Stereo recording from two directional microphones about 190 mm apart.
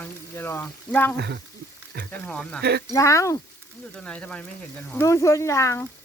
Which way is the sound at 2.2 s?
5° left (ahead or behind).